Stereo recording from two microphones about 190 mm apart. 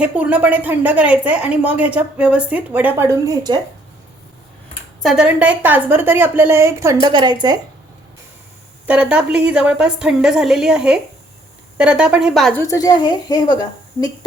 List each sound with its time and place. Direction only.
0.0 s a woman's voice: 5° right (ahead or behind)
5.0 s a woman's voice: 5° right (ahead or behind); by 7.3 s 20° right (ahead or behind)
8.9 s a woman's voice: 5° right (ahead or behind)
12.6 s a woman's voice: 20° left (ahead or behind)